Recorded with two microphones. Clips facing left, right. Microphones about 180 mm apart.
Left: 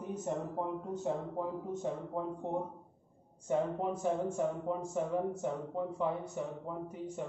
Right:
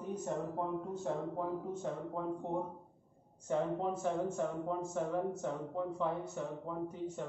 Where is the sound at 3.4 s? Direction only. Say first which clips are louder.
Left 2 dB; 15° left (ahead or behind).